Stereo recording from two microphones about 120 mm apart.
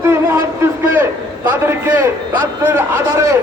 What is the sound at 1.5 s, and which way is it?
A man's voice, 15° right (ahead or behind).